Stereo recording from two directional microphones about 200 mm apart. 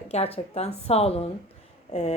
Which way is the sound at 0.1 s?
30° left (ahead or behind).